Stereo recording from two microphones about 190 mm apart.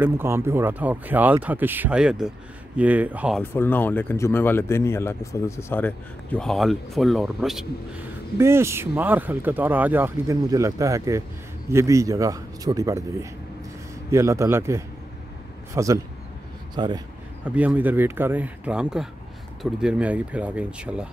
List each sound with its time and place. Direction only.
0.0 s speech: 10° right (ahead or behind)
3.3 s speech: 10° left (ahead or behind)
8.4 s speech: 15° right (ahead or behind)
17.5 s speech: 10° right (ahead or behind)